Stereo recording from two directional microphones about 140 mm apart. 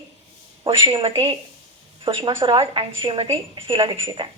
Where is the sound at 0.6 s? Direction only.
35° right (ahead or behind).